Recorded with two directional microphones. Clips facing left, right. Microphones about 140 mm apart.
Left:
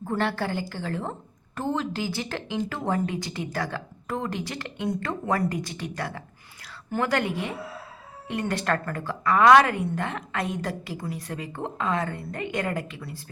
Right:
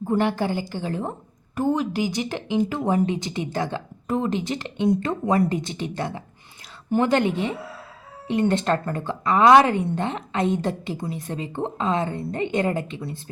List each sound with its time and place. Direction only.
0.0 s a woman's voice: 15° right (ahead or behind)